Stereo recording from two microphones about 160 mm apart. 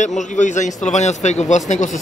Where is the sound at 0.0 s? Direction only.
50° left (ahead or behind).